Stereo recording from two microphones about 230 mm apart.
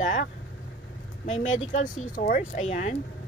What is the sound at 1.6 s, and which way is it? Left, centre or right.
Speech, left.